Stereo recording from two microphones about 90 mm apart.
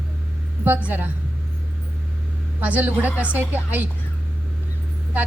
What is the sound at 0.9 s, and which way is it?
Speech, 20° right (ahead or behind).